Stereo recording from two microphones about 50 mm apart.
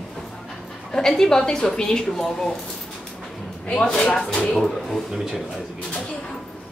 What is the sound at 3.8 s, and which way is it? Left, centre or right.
Speech, centre.